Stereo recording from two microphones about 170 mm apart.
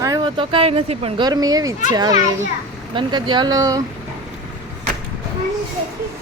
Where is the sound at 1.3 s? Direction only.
20° right (ahead or behind).